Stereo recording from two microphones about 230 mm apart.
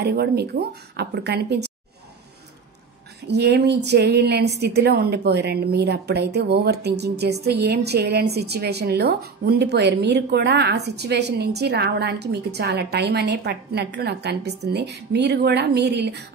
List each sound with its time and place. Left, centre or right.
0.0 s a woman's voice: right
3.3 s a woman's voice: right